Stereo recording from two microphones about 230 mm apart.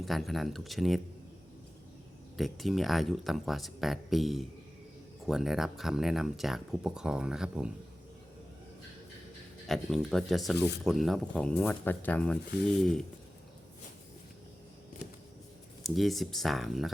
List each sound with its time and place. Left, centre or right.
0.0 s speech: centre
2.4 s speech: centre
9.6 s speech: centre
15.8 s speech: centre